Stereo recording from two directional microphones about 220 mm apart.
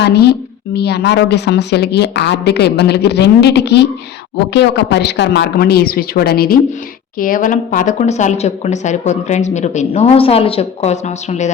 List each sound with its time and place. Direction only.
0.0 s a woman's voice: 50° left (ahead or behind); by 11.5 s 30° left (ahead or behind)